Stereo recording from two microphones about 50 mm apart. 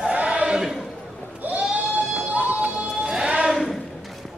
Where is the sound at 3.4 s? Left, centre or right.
Centre.